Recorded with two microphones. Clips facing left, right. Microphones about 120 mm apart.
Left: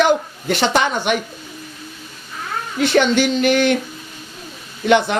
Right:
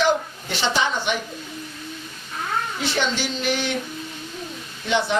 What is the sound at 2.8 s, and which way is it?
Speech, 60° left (ahead or behind).